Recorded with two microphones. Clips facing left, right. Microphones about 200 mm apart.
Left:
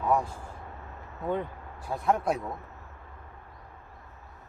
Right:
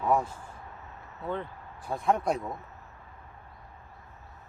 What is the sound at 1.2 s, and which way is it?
Speech, 15° left (ahead or behind).